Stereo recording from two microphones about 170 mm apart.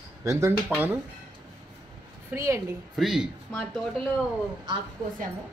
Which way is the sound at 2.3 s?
15° right (ahead or behind).